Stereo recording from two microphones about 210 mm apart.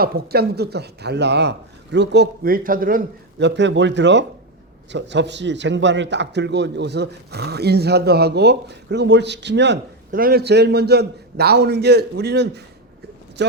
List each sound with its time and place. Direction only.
0.0 s a man's voice: 45° right (ahead or behind)
10.1 s speech: 45° right (ahead or behind)